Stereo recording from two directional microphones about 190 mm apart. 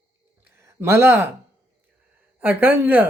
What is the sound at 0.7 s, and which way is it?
Speech, 10° right (ahead or behind).